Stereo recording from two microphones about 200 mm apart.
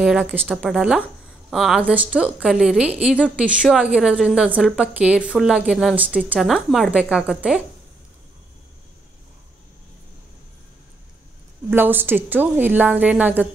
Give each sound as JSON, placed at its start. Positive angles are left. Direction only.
{"t": 0.0, "sound": "a woman's voice", "side_deg": -5}
{"t": 11.7, "sound": "a woman's voice", "side_deg": -10}